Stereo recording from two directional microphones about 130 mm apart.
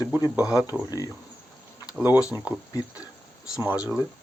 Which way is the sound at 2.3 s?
15° right (ahead or behind).